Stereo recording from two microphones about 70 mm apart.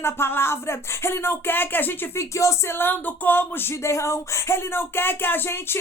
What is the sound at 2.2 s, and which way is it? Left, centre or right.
Speech, left.